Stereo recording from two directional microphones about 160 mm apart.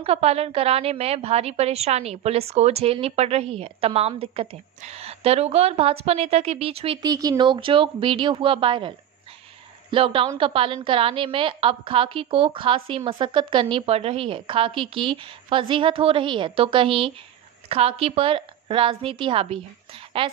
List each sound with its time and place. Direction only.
0.0 s a woman's voice: 40° right (ahead or behind)
7.1 s a woman's voice: 25° right (ahead or behind)